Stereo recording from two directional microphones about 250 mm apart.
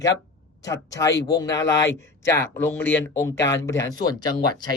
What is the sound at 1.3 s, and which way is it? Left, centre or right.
Speech, centre.